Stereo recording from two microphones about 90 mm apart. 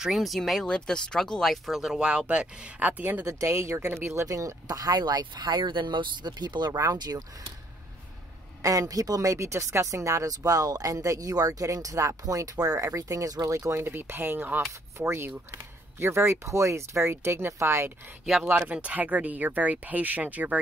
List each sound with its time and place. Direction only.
0.0 s speech: centre (ahead or behind); by 3.3 s 20° right (ahead or behind)
3.3 s speech: 30° right (ahead or behind)
8.6 s speech: 40° right (ahead or behind); by 20.5 s 15° right (ahead or behind)